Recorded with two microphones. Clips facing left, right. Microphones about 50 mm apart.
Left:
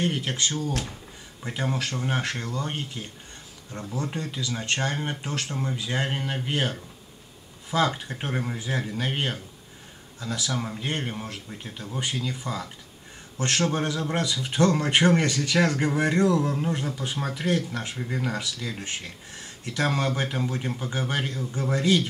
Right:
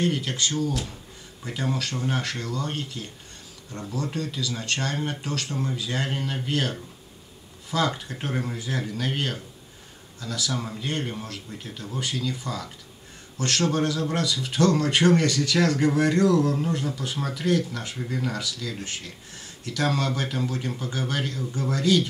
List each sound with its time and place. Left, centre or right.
0.0 s speech: left
7.7 s speech: left
8.1 s a man's voice: centre